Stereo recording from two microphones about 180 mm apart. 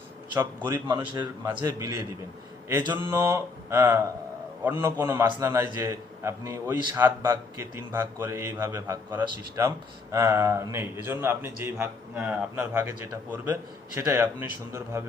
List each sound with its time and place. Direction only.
0.3 s a man's voice: 10° right (ahead or behind)
0.9 s a man's voice: 25° right (ahead or behind)